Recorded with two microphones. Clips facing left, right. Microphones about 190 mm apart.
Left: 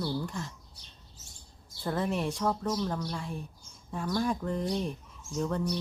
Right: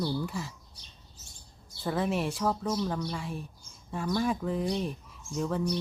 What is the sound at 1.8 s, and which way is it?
Speech, centre (ahead or behind).